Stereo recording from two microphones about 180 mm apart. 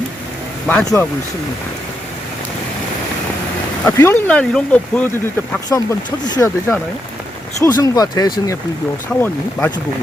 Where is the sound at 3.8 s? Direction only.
15° left (ahead or behind).